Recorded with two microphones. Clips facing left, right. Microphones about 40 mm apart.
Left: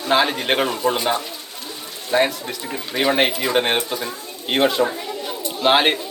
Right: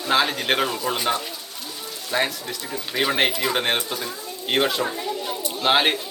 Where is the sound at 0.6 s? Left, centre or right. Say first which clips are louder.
Left 5 dB; left.